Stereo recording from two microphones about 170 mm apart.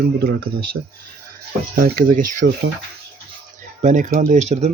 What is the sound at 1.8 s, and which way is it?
Speech, 55° right (ahead or behind).